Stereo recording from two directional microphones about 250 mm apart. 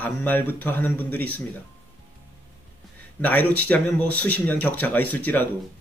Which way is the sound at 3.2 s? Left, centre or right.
Centre.